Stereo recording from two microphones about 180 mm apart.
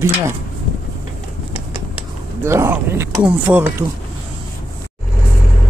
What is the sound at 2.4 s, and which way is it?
Speech, 15° right (ahead or behind).